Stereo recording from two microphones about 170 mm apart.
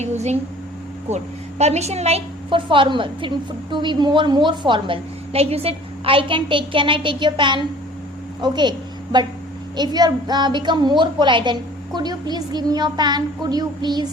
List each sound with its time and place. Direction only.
0.0 s a woman's voice: 40° right (ahead or behind); by 8.7 s 25° right (ahead or behind)
9.7 s a woman's voice: 25° right (ahead or behind)